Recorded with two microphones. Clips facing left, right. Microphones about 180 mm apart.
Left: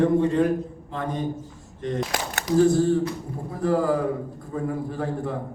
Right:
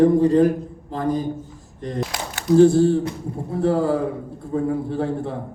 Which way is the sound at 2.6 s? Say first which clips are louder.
Right 4 dB; 30° right (ahead or behind).